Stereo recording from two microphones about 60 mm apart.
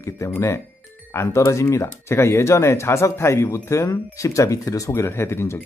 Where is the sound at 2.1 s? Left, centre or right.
Left.